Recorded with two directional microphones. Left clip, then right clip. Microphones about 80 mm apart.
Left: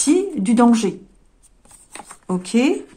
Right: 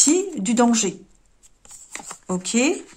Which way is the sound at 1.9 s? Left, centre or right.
Right.